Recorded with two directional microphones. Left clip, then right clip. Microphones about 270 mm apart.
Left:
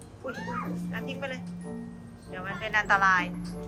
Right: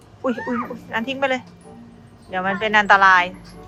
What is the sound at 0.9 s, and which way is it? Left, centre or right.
A woman's voice, right.